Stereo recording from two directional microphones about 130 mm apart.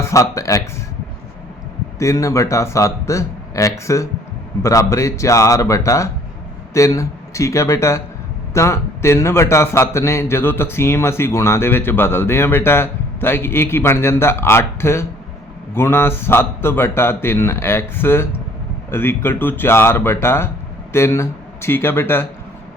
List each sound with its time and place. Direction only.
0.0 s speech: 25° left (ahead or behind)
2.0 s a man's voice: 25° left (ahead or behind)